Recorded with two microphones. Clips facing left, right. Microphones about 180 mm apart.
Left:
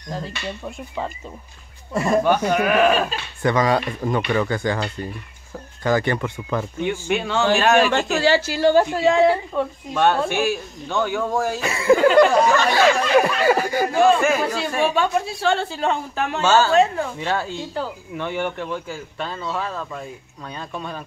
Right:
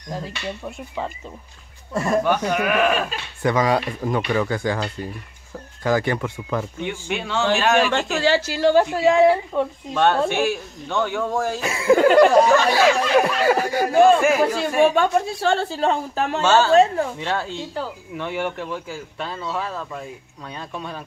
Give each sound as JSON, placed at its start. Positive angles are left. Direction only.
{"t": 0.1, "sound": "speech", "side_deg": -10}
{"t": 2.2, "sound": "speech", "side_deg": 30}
{"t": 3.4, "sound": "speech", "side_deg": -5}
{"t": 6.9, "sound": "speech", "side_deg": 45}
{"t": 7.9, "sound": "speech", "side_deg": 5}
{"t": 9.9, "sound": "speech", "side_deg": 5}
{"t": 14.8, "sound": "speech", "side_deg": -45}
{"t": 16.4, "sound": "speech", "side_deg": 5}